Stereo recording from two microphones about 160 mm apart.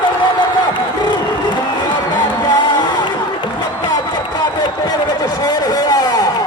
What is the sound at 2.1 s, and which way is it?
Music, 30° left (ahead or behind).